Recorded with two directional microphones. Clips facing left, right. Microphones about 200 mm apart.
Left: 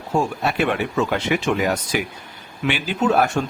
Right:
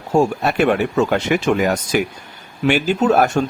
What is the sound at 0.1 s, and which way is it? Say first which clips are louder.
Speech: right 5 dB; 45° right (ahead or behind).